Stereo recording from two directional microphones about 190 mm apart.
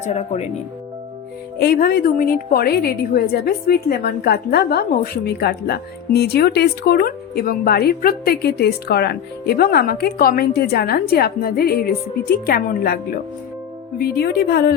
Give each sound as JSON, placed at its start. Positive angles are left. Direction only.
{"t": 0.1, "sound": "speech", "side_deg": 35}
{"t": 1.5, "sound": "a woman's voice", "side_deg": 50}
{"t": 14.0, "sound": "a woman's voice", "side_deg": 55}